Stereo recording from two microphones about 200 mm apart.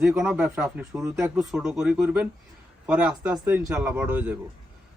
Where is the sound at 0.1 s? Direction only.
10° right (ahead or behind).